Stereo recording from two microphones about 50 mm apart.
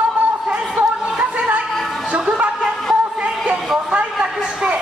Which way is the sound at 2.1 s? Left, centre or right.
Right.